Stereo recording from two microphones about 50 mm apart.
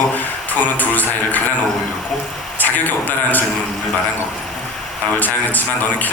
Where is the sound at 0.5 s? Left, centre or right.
Left.